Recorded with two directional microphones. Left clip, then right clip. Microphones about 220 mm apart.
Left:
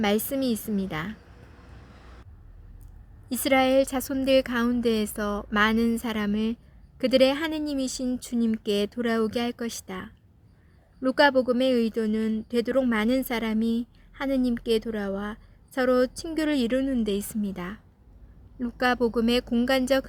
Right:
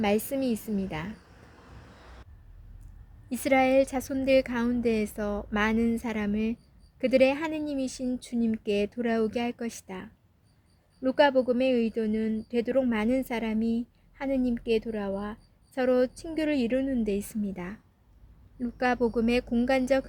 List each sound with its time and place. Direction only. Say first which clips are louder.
0.0 s speech: left 2 dB; 15° left (ahead or behind)
3.2 s speech: left 2 dB; 15° left (ahead or behind)